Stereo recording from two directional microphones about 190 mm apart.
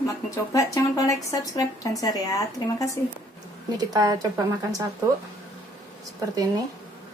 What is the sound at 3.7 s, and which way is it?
Speech, 20° right (ahead or behind).